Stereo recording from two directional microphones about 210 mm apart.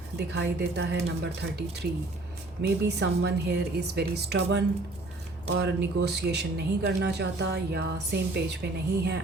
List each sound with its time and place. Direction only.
0.2 s speech: 50° right (ahead or behind)